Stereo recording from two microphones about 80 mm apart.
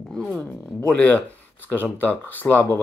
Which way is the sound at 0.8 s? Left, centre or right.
Centre.